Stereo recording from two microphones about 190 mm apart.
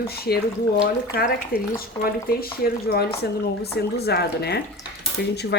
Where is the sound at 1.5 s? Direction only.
50° left (ahead or behind).